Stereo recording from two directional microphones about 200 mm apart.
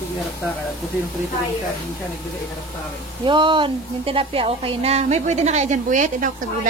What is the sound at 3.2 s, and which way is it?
Speech, 25° right (ahead or behind).